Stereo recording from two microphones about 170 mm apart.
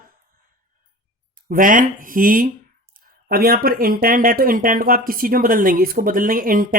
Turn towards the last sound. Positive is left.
turn(degrees=-55)  # may be behind; listen again after turning